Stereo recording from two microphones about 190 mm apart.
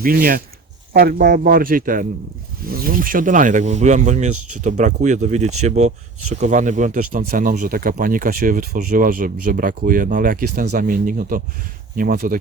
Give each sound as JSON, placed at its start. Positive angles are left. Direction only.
{"t": 0.0, "sound": "speech", "side_deg": -50}